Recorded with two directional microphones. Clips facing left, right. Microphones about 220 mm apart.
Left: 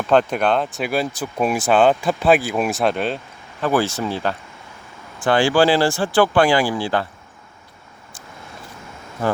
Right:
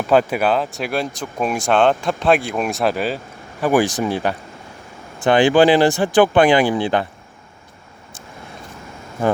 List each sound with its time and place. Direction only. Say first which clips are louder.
0.1 s speech: right 1 dB; 5° right (ahead or behind)
3.6 s speech: right 3 dB; 15° right (ahead or behind)